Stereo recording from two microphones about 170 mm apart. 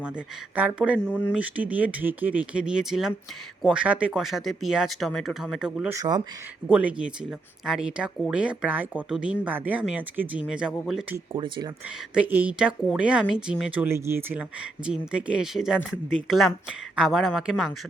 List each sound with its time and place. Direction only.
0.5 s speech: 10° right (ahead or behind)
0.9 s speech: 5° left (ahead or behind)
1.3 s speech: 10° right (ahead or behind)
5.9 s speech: 20° right (ahead or behind)
6.7 s speech: 5° right (ahead or behind)
11.3 s speech: 30° right (ahead or behind)
12.1 s speech: 10° right (ahead or behind)